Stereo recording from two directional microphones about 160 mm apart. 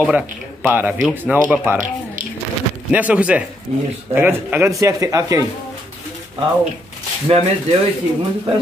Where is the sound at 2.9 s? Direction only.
10° right (ahead or behind).